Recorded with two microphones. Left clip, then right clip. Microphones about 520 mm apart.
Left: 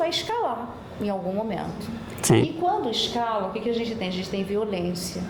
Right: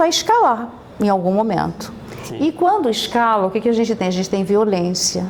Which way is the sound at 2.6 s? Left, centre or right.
Right.